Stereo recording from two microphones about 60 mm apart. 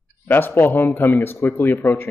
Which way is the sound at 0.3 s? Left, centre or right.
Left.